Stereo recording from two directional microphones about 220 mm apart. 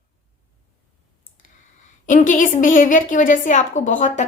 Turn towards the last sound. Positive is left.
turn(degrees=35)  # may be behind; listen again after turning